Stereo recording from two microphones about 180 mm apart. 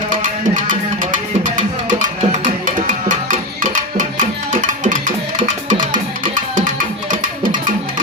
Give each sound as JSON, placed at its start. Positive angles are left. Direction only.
{"t": 0.2, "sound": "music", "side_deg": -45}
{"t": 7.1, "sound": "music", "side_deg": -45}